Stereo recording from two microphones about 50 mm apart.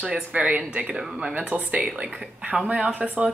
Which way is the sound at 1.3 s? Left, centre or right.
Right.